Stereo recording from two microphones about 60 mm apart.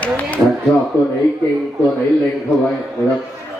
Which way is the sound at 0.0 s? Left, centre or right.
Left.